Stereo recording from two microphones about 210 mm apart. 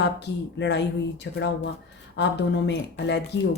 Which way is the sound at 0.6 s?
55° left (ahead or behind).